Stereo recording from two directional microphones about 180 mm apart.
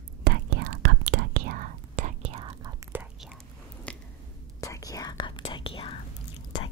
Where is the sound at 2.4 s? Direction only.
25° right (ahead or behind).